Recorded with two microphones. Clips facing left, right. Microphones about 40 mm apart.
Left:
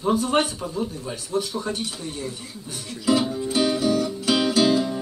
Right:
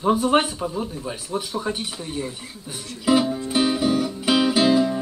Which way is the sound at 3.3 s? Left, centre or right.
Centre.